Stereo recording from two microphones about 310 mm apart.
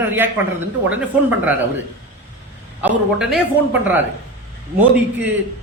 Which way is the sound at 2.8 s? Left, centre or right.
Centre.